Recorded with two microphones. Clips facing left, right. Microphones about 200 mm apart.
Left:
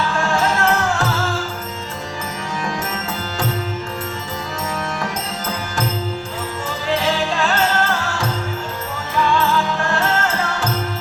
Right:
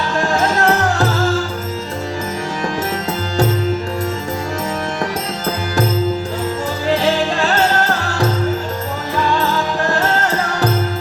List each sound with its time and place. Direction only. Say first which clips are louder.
0.2 s music: right 4 dB; 35° right (ahead or behind)
6.9 s music: right 3 dB; 35° right (ahead or behind)